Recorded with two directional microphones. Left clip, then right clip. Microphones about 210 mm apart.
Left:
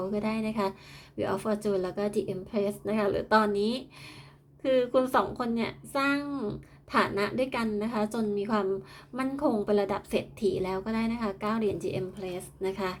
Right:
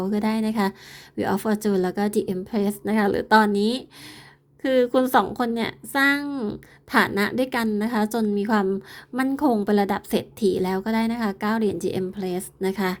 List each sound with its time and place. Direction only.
0.0 s a woman's voice: 40° right (ahead or behind)